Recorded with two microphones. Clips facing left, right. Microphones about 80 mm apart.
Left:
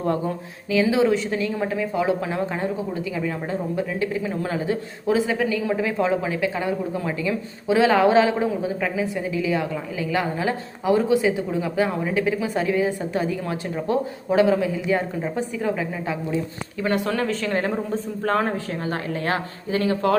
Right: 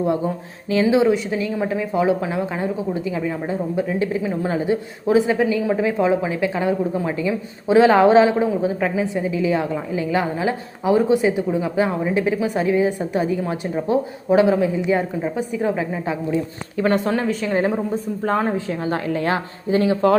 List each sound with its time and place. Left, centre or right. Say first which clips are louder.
0.7 s a man's voice: right 3 dB; right
1.0 s a woman's voice: right 2 dB; centre
17.2 s a woman's voice: right 4 dB; centre
18.5 s a man's voice: right 4 dB; right